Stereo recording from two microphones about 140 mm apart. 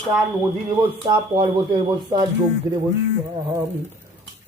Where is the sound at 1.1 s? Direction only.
30° right (ahead or behind).